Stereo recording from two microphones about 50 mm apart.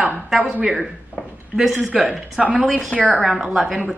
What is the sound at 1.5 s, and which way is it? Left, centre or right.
A woman's voice, centre.